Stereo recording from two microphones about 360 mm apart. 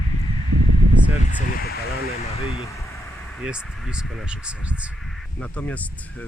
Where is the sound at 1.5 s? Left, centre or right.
Left.